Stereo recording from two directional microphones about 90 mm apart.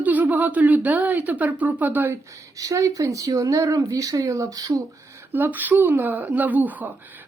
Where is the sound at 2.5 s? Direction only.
40° right (ahead or behind).